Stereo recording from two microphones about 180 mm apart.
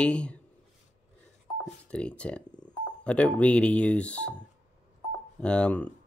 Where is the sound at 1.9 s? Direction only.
5° left (ahead or behind).